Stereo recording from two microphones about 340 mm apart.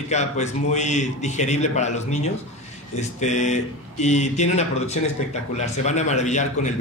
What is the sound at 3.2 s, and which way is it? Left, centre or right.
A man's voice, left.